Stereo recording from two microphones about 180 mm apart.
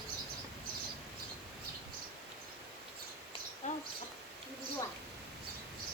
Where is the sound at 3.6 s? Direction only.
40° left (ahead or behind).